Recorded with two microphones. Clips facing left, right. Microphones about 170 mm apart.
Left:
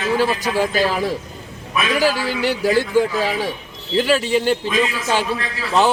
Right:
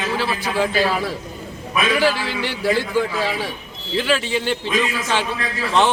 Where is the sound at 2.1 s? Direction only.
40° left (ahead or behind).